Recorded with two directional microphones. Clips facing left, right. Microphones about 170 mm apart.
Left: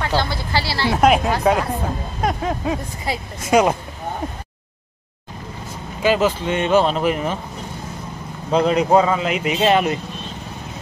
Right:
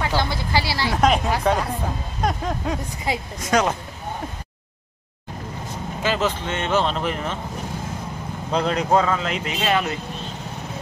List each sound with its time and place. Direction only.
0.0 s speech: 15° right (ahead or behind)
0.8 s speech: 5° left (ahead or behind)
6.0 s speech: 10° left (ahead or behind)
8.5 s speech: 10° left (ahead or behind)
9.6 s speech: 20° left (ahead or behind)